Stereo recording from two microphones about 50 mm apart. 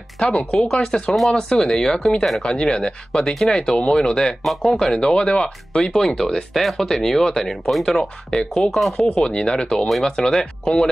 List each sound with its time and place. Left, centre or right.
0.2 s speech: left
0.6 s speech: centre
4.5 s speech: centre
4.7 s speech: centre
8.3 s speech: centre